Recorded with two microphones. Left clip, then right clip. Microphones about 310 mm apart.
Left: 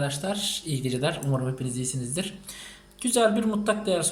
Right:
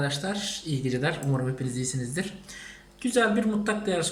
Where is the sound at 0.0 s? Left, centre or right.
Centre.